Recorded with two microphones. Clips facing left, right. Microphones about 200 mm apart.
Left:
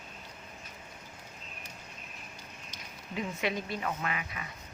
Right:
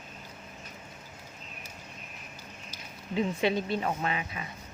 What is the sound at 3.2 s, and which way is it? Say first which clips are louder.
Speech: right 6 dB; 30° right (ahead or behind).